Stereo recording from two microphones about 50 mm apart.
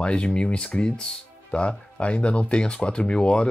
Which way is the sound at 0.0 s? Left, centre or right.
Left.